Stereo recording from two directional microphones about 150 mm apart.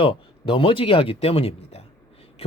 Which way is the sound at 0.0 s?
35° left (ahead or behind).